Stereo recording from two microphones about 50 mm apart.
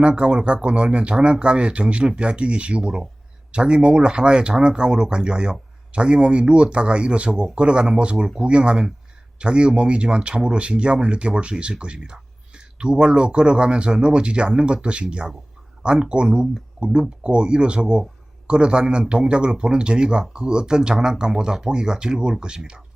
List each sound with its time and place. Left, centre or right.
0.0 s speech: centre